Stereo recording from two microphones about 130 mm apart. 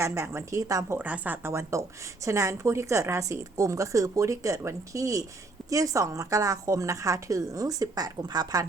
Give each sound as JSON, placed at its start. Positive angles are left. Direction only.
{"t": 0.0, "sound": "a woman's voice", "side_deg": -20}
{"t": 0.9, "sound": "a woman's voice", "side_deg": -10}